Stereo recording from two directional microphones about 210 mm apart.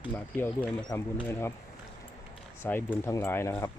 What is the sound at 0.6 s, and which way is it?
Speech, 20° left (ahead or behind).